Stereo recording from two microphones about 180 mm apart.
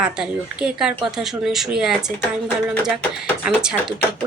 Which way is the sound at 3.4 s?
5° right (ahead or behind).